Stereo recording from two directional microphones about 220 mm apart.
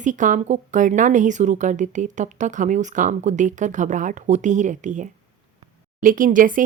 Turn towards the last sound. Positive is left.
turn(degrees=-35)  # may be behind; listen again after turning